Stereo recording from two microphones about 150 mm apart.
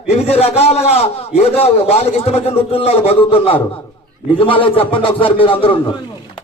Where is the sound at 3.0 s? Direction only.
40° left (ahead or behind).